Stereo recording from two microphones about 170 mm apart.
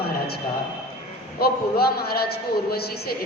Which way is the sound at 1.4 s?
65° left (ahead or behind).